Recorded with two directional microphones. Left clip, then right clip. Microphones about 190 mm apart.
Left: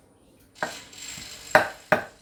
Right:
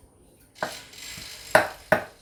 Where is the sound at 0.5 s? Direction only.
15° left (ahead or behind).